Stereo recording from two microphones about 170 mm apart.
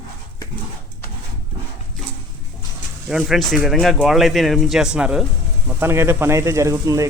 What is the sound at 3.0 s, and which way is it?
Speech, centre (ahead or behind).